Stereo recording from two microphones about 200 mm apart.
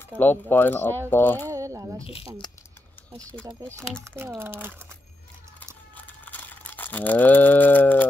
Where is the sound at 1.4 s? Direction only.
15° right (ahead or behind).